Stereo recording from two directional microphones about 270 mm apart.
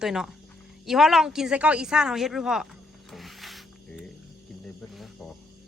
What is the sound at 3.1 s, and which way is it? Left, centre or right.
Music, centre.